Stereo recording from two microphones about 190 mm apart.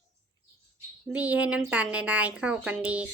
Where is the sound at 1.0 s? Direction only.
5° right (ahead or behind).